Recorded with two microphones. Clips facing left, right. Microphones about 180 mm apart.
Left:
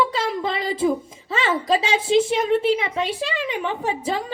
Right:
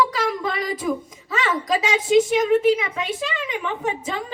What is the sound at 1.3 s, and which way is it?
A woman's voice, 30° left (ahead or behind).